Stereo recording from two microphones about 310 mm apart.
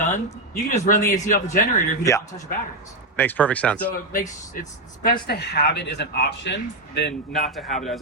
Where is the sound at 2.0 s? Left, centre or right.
Centre.